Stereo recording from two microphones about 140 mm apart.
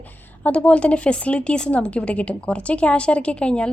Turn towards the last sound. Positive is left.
turn(degrees=5)  # may be behind; listen again after turning